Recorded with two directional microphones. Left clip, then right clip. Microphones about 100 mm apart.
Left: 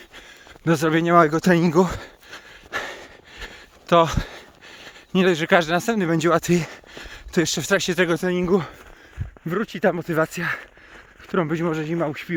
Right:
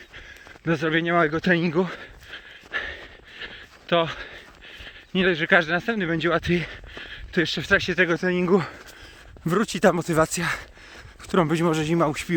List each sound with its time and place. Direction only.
0.6 s a sound: 60° left (ahead or behind)
3.8 s speech: 90° left
4.8 s a sound: 55° left (ahead or behind)
5.5 s speech: 40° left (ahead or behind)
5.7 s speech: 60° left (ahead or behind); by 8.1 s 40° left (ahead or behind)
8.3 s speech: centre (ahead or behind)
9.5 s speech: 55° right (ahead or behind)
10.2 s speech: 20° right (ahead or behind)
11.3 s speech: 35° right (ahead or behind)
11.9 s speech: 45° right (ahead or behind)